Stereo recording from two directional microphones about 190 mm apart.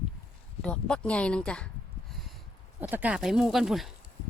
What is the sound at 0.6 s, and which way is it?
Speech, 5° left (ahead or behind).